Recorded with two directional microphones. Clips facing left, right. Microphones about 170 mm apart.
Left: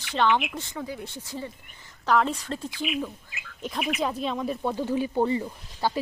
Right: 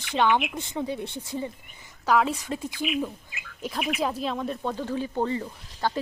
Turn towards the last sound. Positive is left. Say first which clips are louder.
# left 1 dB
turn(degrees=10)  # may be behind; listen again after turning